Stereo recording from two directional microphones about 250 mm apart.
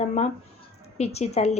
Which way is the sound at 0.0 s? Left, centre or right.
Left.